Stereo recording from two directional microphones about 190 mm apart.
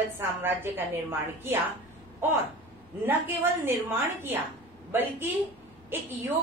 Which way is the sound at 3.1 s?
10° right (ahead or behind).